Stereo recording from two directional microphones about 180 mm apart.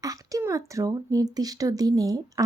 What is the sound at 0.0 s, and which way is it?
Speech, 20° right (ahead or behind).